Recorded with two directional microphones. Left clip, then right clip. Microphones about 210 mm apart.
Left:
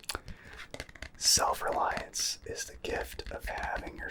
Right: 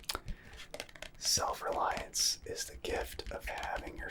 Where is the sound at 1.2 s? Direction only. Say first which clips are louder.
Left 6 dB; 50° left (ahead or behind).